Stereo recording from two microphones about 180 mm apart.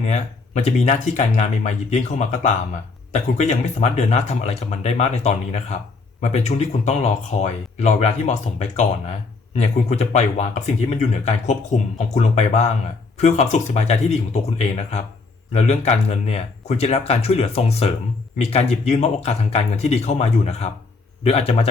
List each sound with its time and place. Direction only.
0.0 s speech: 40° left (ahead or behind)